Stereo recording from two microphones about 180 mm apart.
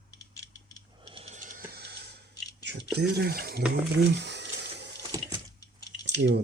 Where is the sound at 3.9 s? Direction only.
70° right (ahead or behind).